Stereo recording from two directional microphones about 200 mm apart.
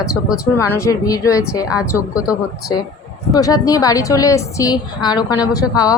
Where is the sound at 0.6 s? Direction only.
15° left (ahead or behind).